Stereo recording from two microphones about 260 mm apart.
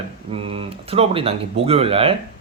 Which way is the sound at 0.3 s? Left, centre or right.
Right.